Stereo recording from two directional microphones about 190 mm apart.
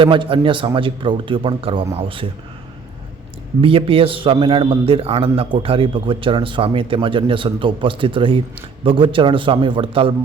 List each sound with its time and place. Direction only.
0.0 s a man's voice: 25° right (ahead or behind)
3.6 s a man's voice: 30° right (ahead or behind)